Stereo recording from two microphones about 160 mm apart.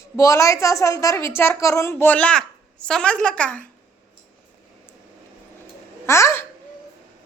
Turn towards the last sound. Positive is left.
turn(degrees=15)  # may be behind; listen again after turning